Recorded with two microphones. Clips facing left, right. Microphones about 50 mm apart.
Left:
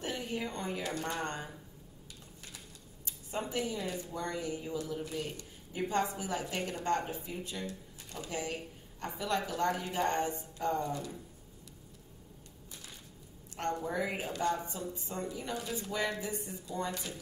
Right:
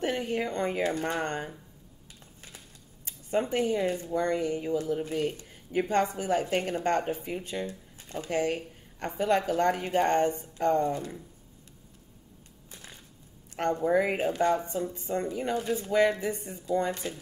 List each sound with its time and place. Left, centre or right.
0.0 s a woman's voice: right
3.1 s speech: right
7.6 s a sound: right
8.3 s speech: right
10.9 s speech: right
13.7 s speech: right